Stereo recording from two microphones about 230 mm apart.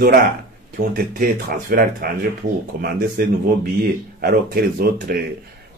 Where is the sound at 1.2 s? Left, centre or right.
Right.